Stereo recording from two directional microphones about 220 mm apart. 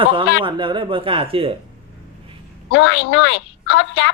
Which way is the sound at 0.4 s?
20° right (ahead or behind).